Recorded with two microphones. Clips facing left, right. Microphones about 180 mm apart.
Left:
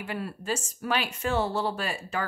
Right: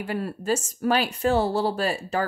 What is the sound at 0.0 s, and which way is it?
A woman's voice, 40° right (ahead or behind).